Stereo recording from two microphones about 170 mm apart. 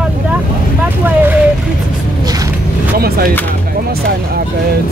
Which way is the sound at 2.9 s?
65° right (ahead or behind).